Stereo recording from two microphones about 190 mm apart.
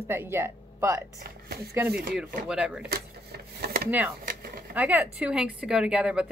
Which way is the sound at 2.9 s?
55° right (ahead or behind).